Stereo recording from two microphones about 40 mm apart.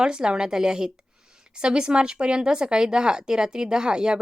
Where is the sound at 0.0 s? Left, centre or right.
Centre.